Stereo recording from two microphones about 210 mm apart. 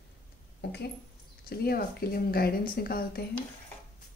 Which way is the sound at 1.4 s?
45° left (ahead or behind).